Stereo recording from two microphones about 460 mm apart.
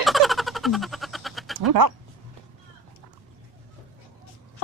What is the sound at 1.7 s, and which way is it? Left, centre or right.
Speech, right.